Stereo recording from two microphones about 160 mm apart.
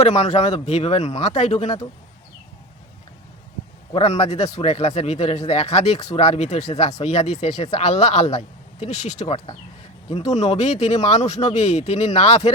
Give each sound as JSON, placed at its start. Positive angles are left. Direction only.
{"t": 0.0, "sound": "speech", "side_deg": 45}
{"t": 3.9, "sound": "speech", "side_deg": 45}